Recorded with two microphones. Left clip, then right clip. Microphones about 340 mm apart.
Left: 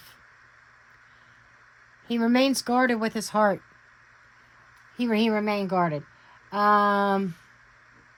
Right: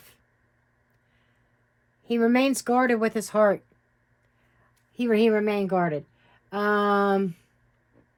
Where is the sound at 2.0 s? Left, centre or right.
Left.